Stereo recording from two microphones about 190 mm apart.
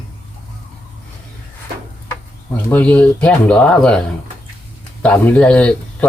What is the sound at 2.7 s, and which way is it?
Speech, 5° left (ahead or behind).